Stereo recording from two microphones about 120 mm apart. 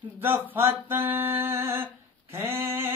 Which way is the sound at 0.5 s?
20° right (ahead or behind).